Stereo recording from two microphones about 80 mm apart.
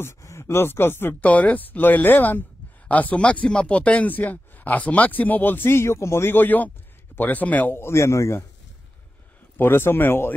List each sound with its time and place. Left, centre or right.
0.0 s speech: left
9.6 s speech: left